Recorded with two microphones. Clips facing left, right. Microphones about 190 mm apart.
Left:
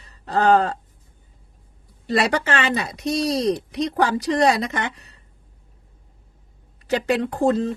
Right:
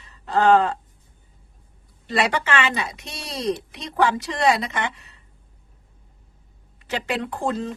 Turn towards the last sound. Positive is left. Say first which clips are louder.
# left 6 dB
turn(degrees=40)  # may be behind; listen again after turning